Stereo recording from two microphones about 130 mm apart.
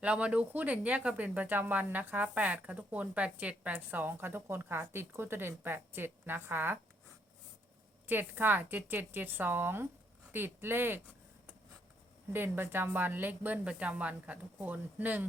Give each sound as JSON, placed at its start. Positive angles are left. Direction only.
{"t": 0.0, "sound": "speech", "side_deg": -10}
{"t": 8.0, "sound": "speech", "side_deg": -15}
{"t": 12.3, "sound": "speech", "side_deg": -15}